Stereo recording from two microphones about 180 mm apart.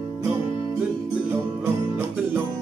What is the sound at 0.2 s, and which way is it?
Music, 15° right (ahead or behind).